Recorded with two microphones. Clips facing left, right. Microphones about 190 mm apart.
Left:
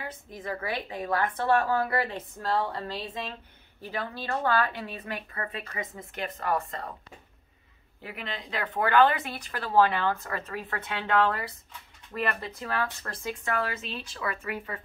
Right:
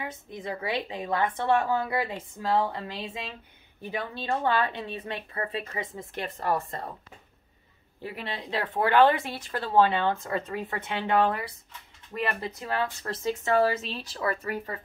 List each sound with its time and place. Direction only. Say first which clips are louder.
0.0 s speech: right 2 dB; 20° right (ahead or behind)
8.0 s speech: right 2 dB; 35° right (ahead or behind)